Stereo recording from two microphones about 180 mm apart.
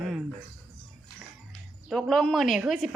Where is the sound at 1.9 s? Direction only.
Centre (ahead or behind).